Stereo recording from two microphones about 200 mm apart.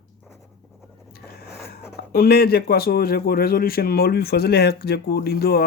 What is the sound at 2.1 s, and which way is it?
Speech, 50° left (ahead or behind).